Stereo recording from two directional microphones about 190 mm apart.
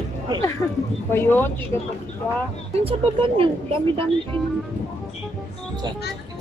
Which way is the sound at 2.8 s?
30° right (ahead or behind).